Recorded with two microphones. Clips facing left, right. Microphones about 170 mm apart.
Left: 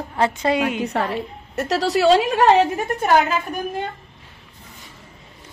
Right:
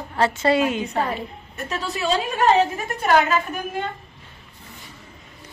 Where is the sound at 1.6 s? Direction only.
85° left.